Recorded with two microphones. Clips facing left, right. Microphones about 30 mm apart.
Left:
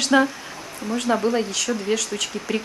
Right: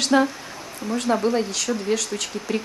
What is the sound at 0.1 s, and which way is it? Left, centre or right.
Speech, centre.